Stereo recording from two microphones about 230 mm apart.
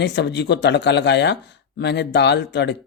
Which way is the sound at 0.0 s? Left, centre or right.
Left.